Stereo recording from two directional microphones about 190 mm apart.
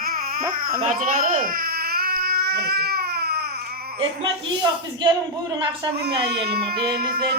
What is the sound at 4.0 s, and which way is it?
A man's voice, 25° right (ahead or behind).